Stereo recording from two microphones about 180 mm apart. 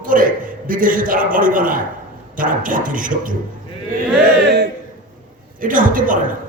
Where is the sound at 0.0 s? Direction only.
50° right (ahead or behind).